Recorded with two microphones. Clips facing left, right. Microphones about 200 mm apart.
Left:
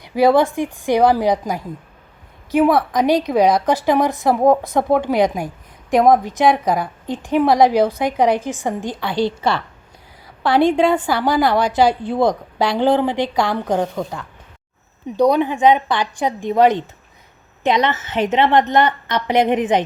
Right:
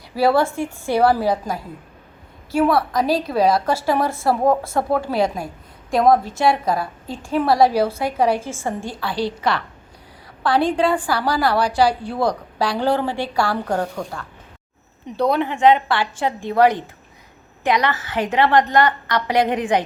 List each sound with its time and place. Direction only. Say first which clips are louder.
0.0 s a woman's voice: left 3 dB; 15° left (ahead or behind)
15.1 s a woman's voice: left 4 dB; 15° left (ahead or behind)